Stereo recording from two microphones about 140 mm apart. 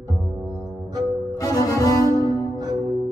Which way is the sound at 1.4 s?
25° left (ahead or behind).